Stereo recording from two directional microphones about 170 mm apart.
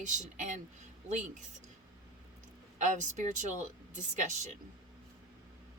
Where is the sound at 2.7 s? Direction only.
45° right (ahead or behind).